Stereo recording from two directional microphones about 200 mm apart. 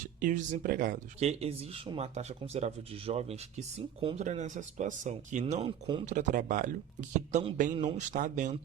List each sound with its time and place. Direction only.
0.2 s speech: 40° right (ahead or behind)
5.8 s speech: 25° right (ahead or behind)
6.1 s speech: 40° right (ahead or behind)